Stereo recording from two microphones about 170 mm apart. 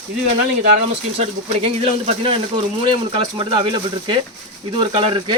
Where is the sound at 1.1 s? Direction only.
35° right (ahead or behind).